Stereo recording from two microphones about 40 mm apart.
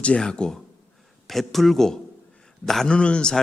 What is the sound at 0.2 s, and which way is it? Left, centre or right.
Speech, centre.